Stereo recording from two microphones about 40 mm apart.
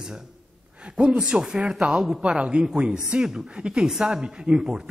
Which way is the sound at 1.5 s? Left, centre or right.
Centre.